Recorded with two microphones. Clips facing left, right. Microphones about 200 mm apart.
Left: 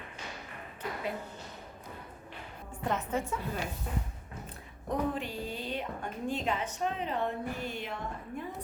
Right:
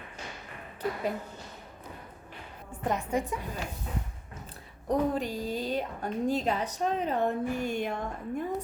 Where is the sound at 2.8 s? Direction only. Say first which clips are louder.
Right 3 dB; 15° right (ahead or behind).